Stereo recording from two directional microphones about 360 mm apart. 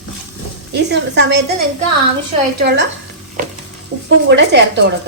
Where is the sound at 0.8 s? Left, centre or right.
Right.